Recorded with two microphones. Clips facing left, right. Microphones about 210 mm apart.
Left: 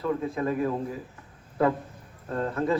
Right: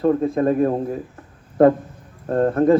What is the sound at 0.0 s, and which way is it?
Speech, 50° right (ahead or behind).